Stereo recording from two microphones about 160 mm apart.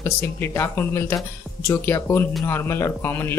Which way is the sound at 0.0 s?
15° left (ahead or behind).